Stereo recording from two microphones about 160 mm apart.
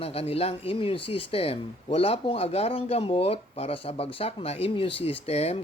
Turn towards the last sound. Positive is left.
turn(degrees=40)  # may be behind; listen again after turning